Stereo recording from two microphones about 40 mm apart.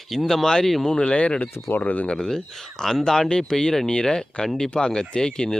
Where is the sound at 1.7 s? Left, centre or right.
Left.